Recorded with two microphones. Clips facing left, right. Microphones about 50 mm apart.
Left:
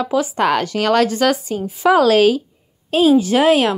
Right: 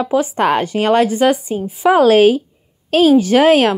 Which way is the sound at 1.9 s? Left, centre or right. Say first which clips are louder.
Right 2 dB; right.